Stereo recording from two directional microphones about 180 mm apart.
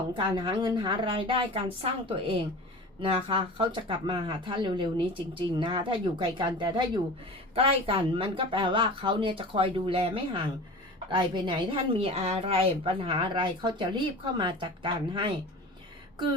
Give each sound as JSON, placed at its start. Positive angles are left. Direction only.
{"t": 0.1, "sound": "speech", "side_deg": -25}